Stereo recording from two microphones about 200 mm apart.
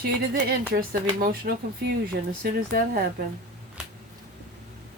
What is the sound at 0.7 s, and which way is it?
Speech, 55° right (ahead or behind).